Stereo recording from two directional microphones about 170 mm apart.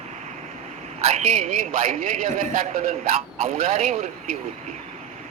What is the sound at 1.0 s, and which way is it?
A man's voice, 40° right (ahead or behind).